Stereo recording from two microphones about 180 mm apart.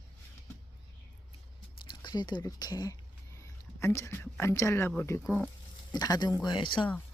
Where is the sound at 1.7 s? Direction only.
25° left (ahead or behind).